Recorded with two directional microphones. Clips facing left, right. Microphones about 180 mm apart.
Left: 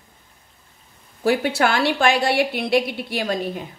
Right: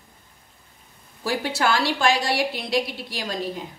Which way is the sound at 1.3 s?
60° left (ahead or behind).